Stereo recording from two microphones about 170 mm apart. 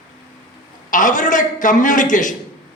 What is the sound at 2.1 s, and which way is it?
Speech, 50° left (ahead or behind).